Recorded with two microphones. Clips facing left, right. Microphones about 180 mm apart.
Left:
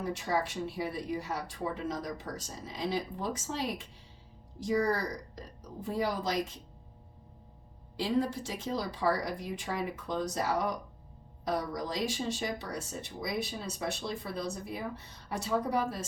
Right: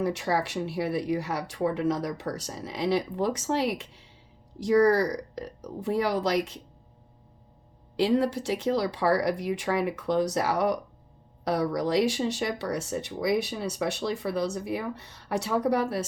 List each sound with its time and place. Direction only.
0.0 s speech: 75° right (ahead or behind)
7.9 s speech: 75° right (ahead or behind)